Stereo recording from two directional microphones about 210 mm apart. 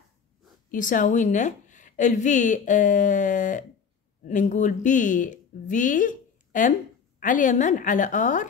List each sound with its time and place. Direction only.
0.7 s a woman's voice: 40° left (ahead or behind)